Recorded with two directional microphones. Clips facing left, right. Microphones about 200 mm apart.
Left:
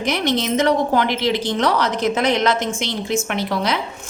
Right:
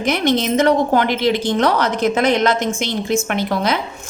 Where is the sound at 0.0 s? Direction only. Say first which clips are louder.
Right 3 dB; 50° right (ahead or behind).